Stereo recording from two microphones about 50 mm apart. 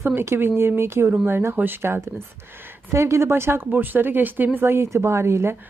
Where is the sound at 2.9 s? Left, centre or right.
Right.